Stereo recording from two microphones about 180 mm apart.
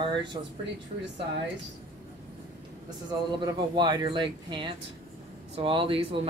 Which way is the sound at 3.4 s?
25° right (ahead or behind).